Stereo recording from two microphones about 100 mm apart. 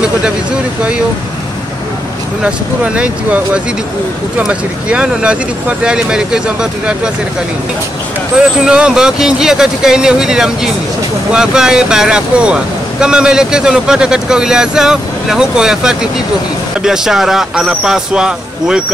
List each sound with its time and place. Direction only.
2.4 s speech: 10° right (ahead or behind)
8.4 s speech: 10° right (ahead or behind)